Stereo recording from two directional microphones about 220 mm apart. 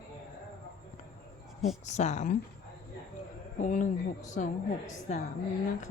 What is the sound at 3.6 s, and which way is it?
Speech, 35° left (ahead or behind).